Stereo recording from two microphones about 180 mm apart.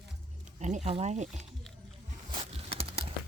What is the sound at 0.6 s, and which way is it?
Speech, 40° right (ahead or behind).